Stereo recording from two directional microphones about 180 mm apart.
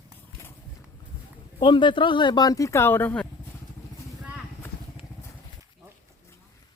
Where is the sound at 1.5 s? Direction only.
25° left (ahead or behind); by 3.2 s 10° left (ahead or behind).